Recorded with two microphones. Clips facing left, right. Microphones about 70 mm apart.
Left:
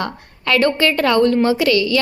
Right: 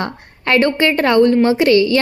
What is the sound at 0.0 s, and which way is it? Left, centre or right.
A woman's voice, right.